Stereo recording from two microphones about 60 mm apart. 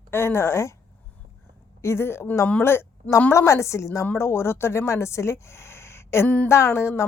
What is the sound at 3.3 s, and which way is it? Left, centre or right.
Speech, left.